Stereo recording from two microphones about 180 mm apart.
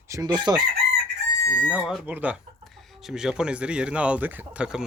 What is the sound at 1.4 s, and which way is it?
Speech, 15° left (ahead or behind).